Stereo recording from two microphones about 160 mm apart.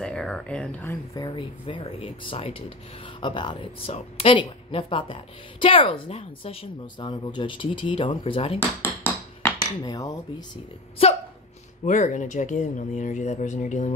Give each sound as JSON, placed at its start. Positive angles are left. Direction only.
{"t": 0.0, "sound": "speech", "side_deg": 5}
{"t": 1.1, "sound": "a woman's voice", "side_deg": 25}
{"t": 8.5, "sound": "a sound", "side_deg": 15}
{"t": 9.6, "sound": "speech", "side_deg": 25}
{"t": 11.0, "sound": "a woman's voice", "side_deg": 40}
{"t": 11.8, "sound": "speech", "side_deg": 50}